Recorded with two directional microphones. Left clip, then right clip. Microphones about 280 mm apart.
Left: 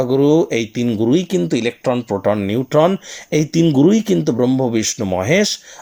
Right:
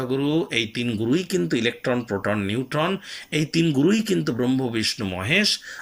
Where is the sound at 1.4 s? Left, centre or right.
Centre.